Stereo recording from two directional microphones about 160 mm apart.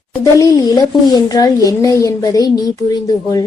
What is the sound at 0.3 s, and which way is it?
A woman's voice, 25° left (ahead or behind).